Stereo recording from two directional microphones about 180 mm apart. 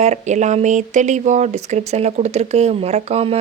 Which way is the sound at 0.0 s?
40° right (ahead or behind).